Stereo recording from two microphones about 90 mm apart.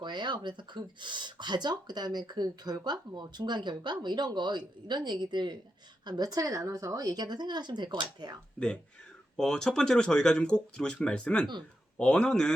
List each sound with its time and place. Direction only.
0.0 s speech: 55° right (ahead or behind)
6.1 s speech: 45° right (ahead or behind)
8.5 s speech: 10° left (ahead or behind)